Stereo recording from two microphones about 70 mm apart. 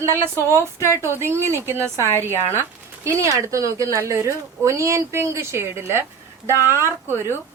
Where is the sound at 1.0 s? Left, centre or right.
Right.